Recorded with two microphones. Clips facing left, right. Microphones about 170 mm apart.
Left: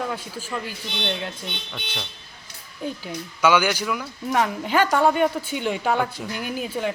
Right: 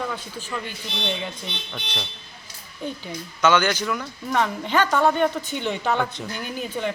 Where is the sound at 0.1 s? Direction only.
10° left (ahead or behind).